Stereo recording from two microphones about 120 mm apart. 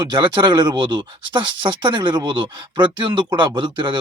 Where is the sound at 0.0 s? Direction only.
40° right (ahead or behind).